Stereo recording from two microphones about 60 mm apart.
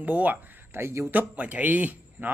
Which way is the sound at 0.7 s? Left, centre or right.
Right.